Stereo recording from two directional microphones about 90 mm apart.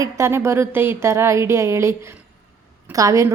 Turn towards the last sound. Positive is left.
turn(degrees=-35)  # may be behind; listen again after turning